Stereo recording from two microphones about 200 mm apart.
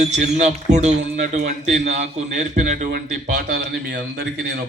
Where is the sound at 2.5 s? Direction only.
40° right (ahead or behind).